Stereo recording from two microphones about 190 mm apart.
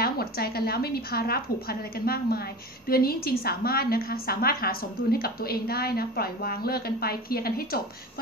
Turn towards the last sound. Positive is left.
turn(degrees=50)  # may be behind; listen again after turning